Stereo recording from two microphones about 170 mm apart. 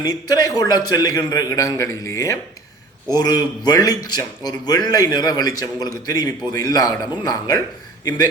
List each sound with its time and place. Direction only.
0.0 s a man's voice: 20° left (ahead or behind)